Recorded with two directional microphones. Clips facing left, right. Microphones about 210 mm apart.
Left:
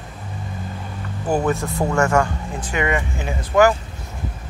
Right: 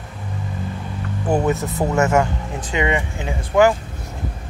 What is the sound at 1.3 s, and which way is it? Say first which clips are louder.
Speech: right 1 dB; 20° right (ahead or behind).